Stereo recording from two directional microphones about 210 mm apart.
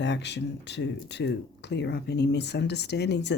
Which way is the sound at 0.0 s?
55° left (ahead or behind).